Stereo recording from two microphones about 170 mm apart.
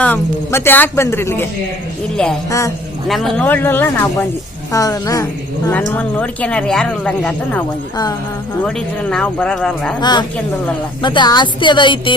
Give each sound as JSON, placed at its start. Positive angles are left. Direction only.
{"t": 0.0, "sound": "a woman's voice", "side_deg": 10}
{"t": 2.5, "sound": "speech", "side_deg": 20}
{"t": 3.1, "sound": "a woman's voice", "side_deg": 0}
{"t": 8.6, "sound": "speech", "side_deg": 5}
{"t": 10.0, "sound": "speech", "side_deg": 25}